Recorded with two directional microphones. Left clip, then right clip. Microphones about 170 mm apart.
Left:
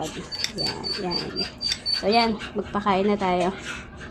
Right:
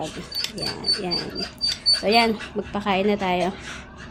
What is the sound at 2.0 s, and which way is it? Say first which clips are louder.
Speech: left 2 dB; 15° right (ahead or behind).